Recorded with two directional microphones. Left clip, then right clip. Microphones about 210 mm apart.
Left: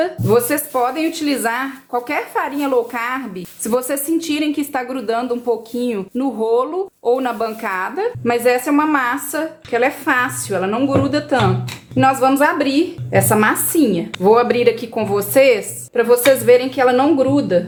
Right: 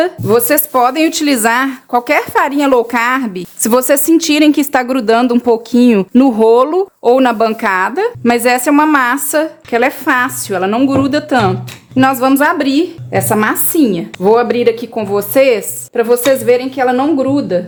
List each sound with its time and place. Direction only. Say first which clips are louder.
0.0 s a woman's voice: right 4 dB; 45° right (ahead or behind)
14.2 s a woman's voice: right 3 dB; 25° right (ahead or behind)